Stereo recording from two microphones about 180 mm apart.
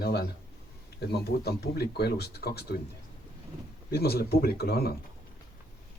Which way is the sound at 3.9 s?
60° left (ahead or behind).